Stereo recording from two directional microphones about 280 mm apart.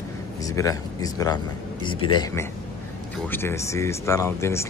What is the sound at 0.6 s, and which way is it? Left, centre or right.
Speech, centre.